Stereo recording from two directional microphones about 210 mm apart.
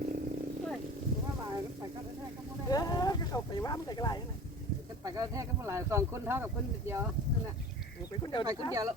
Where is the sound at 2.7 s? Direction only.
20° left (ahead or behind).